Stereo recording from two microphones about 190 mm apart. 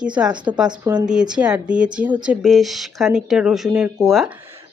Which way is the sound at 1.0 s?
5° right (ahead or behind).